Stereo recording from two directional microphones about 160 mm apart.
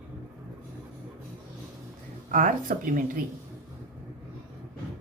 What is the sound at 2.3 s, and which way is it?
Speech, 55° right (ahead or behind).